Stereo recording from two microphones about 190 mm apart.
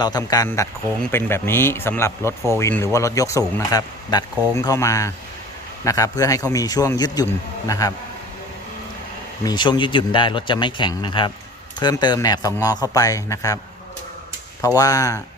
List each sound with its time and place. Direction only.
0.0 s a man's voice: 20° left (ahead or behind)
9.4 s a man's voice: 20° left (ahead or behind)
14.8 s speech: 20° left (ahead or behind)